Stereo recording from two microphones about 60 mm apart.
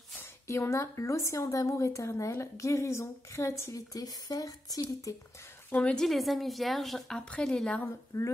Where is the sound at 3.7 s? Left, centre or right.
Left.